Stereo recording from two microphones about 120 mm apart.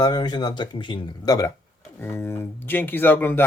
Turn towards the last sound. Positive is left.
turn(degrees=15)  # may be behind; listen again after turning